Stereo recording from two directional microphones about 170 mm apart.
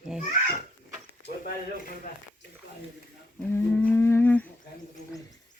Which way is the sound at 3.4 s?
10° left (ahead or behind).